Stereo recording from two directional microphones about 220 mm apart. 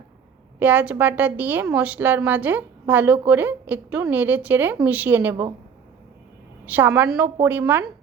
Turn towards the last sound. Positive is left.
turn(degrees=-10)  # may be behind; listen again after turning